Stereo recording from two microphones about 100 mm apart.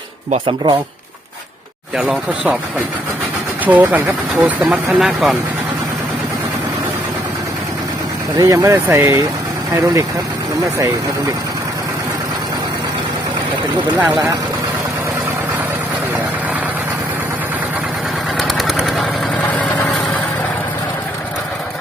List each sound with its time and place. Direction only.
0.4 s speech: 50° right (ahead or behind)
2.0 s speech: 10° right (ahead or behind)
3.6 s speech: 15° right (ahead or behind)
8.4 s speech: 35° right (ahead or behind)
18.3 s engine: centre (ahead or behind)